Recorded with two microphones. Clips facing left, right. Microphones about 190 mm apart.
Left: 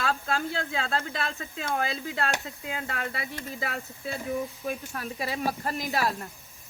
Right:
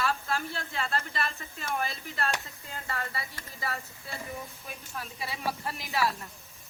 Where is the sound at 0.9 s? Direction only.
90° left.